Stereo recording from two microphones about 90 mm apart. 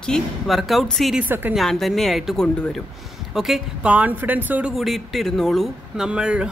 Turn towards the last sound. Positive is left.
turn(degrees=-10)  # may be behind; listen again after turning